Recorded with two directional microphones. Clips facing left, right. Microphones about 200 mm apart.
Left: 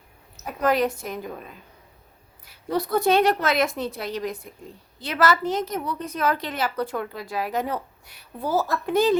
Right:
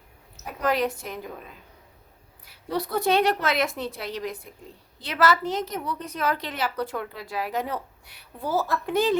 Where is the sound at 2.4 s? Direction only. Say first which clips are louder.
Left 3 dB; 45° left (ahead or behind).